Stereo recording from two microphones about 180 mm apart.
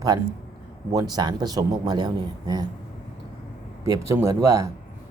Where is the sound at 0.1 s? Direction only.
20° right (ahead or behind).